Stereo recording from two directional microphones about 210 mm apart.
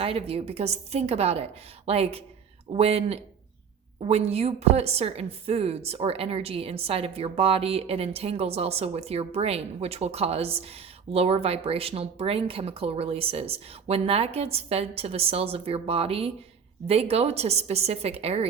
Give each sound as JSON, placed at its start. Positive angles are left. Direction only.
{"t": 0.0, "sound": "a woman's voice", "side_deg": -30}